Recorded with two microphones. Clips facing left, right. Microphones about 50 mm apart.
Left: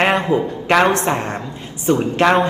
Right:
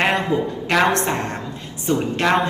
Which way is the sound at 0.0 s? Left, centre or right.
Left.